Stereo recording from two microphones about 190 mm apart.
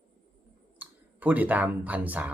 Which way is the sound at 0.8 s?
10° right (ahead or behind).